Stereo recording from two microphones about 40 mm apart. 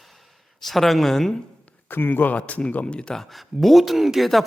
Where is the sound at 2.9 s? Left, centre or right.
Left.